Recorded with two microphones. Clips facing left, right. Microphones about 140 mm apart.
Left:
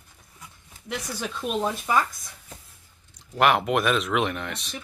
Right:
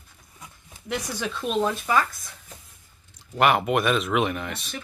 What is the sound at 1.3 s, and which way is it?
Speech, 10° left (ahead or behind).